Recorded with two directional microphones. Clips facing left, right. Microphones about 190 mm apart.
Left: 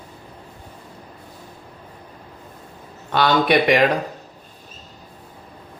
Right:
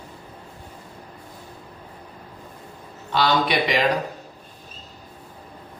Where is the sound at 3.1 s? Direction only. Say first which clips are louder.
Left 4 dB; 55° left (ahead or behind).